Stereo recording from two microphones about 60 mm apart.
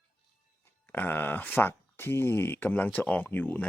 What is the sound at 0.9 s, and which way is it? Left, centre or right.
Speech, left.